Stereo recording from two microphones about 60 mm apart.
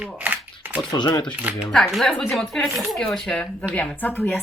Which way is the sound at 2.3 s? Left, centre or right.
Centre.